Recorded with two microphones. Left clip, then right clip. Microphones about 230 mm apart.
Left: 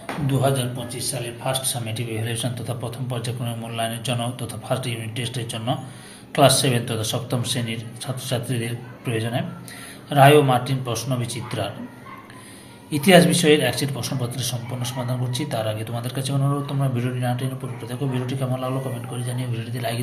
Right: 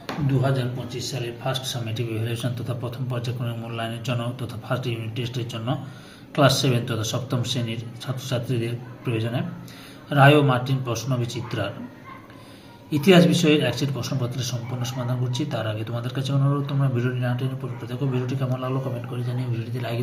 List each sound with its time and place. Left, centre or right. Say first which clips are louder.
0.3 s a man's voice: left 4 dB; centre
12.9 s a man's voice: left 2 dB; centre